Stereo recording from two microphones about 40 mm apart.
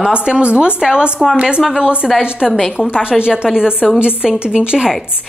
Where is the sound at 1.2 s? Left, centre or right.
Centre.